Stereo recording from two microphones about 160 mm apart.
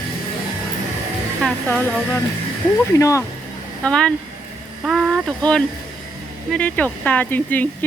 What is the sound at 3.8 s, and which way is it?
Speech, 5° left (ahead or behind).